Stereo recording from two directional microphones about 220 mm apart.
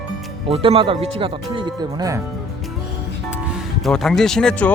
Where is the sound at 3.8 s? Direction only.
Centre (ahead or behind).